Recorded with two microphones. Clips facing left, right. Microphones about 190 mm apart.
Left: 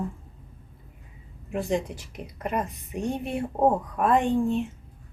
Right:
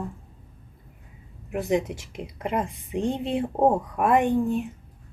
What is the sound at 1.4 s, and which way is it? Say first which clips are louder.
Speech: right 2 dB; 5° right (ahead or behind).